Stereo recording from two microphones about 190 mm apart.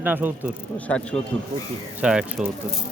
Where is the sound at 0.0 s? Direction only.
10° right (ahead or behind).